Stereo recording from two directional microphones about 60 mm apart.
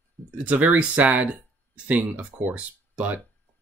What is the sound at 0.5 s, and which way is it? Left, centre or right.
Speech, right.